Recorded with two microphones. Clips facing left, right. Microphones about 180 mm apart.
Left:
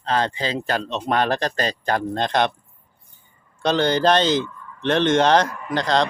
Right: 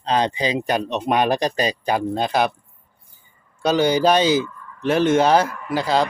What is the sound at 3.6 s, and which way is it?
Speech, 10° right (ahead or behind).